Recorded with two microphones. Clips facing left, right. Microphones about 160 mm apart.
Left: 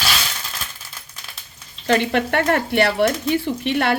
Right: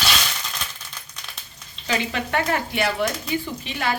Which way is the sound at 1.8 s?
65° left (ahead or behind).